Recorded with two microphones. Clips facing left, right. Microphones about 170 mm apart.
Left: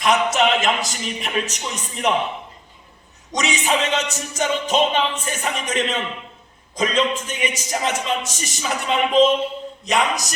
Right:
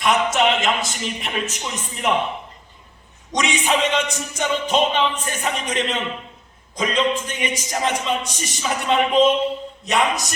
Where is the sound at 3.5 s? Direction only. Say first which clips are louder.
Right 1 dB; 45° left (ahead or behind).